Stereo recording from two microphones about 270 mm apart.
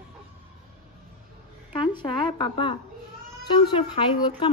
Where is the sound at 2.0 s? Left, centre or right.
Centre.